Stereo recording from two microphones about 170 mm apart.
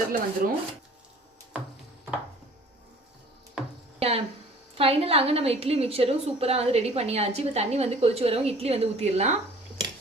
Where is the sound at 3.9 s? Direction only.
35° right (ahead or behind).